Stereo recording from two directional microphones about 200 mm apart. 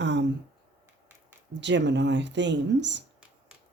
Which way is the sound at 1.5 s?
60° right (ahead or behind).